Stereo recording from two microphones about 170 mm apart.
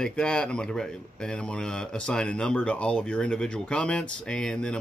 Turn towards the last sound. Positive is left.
turn(degrees=5)  # may be behind; listen again after turning